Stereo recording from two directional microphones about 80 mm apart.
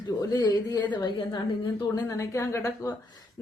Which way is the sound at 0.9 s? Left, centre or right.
Left.